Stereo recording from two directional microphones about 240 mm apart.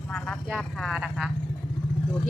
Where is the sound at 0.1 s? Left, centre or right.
Centre.